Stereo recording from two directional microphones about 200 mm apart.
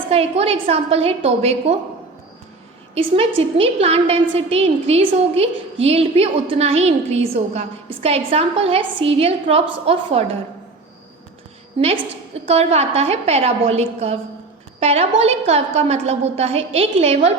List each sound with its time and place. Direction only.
0.1 s a woman's voice: 30° right (ahead or behind)
2.9 s a woman's voice: 30° right (ahead or behind)
11.8 s a woman's voice: 25° right (ahead or behind)